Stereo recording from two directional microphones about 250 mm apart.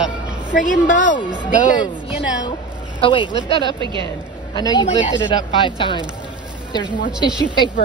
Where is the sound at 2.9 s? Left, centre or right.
Centre.